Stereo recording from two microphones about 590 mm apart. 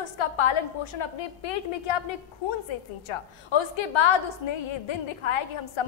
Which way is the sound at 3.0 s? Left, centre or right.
Left.